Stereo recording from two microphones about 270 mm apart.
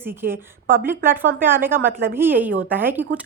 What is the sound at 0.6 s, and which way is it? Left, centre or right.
Speech, right.